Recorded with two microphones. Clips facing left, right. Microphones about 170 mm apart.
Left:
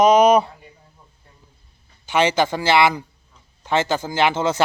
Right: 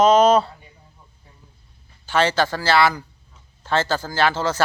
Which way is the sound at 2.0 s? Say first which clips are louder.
Left 1 dB; 15° left (ahead or behind).